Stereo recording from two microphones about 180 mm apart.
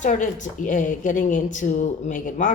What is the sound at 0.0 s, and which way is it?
A woman's voice, 45° left (ahead or behind).